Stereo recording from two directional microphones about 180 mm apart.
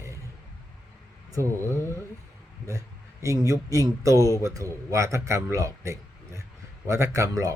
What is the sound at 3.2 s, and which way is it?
A man's voice, 20° right (ahead or behind).